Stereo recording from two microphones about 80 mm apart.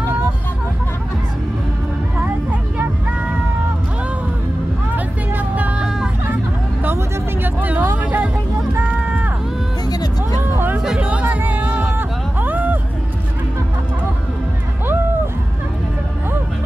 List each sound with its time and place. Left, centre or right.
4.9 s vehicle: centre
7.4 s vehicle: right
8.0 s music: centre
8.7 s run: right
9.8 s music: left
10.5 s music: right
10.8 s music: centre